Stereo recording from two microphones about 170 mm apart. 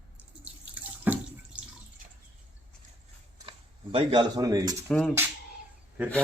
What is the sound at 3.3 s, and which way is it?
Speech, 30° right (ahead or behind).